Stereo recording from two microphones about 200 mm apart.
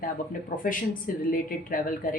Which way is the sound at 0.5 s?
45° left (ahead or behind).